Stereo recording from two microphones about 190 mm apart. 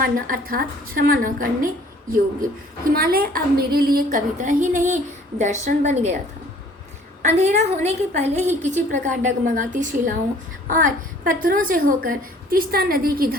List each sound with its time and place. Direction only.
0.0 s a woman's voice: 50° right (ahead or behind)
7.2 s a woman's voice: 35° right (ahead or behind)